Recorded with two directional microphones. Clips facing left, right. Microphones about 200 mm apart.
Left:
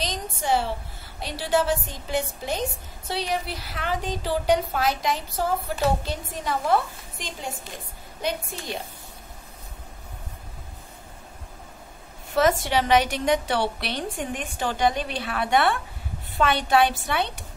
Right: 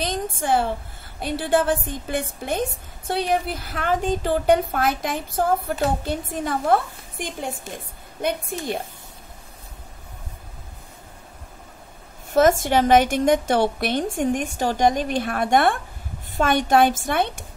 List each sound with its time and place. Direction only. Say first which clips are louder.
0.0 s a sound: right 4 dB; 50° right (ahead or behind)
1.2 s a woman's voice: right 3 dB; 55° right (ahead or behind)
12.4 s a woman's voice: right 5 dB; 45° right (ahead or behind)